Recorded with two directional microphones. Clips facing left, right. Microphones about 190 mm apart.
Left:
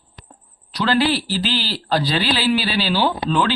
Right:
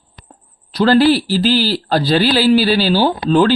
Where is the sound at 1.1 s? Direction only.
40° right (ahead or behind).